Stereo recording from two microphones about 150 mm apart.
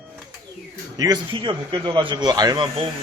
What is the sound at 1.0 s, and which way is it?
Speech, 30° right (ahead or behind).